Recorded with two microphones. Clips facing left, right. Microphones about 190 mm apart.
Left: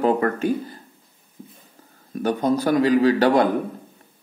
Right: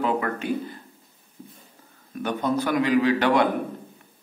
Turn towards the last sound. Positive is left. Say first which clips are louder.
# left 3 dB
turn(degrees=40)  # may be behind; listen again after turning